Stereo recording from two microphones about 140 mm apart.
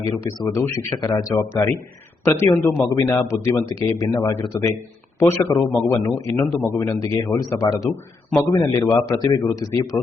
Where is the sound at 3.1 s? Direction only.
20° left (ahead or behind).